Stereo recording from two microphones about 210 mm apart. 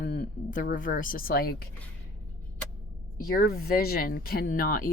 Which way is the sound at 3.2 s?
45° left (ahead or behind).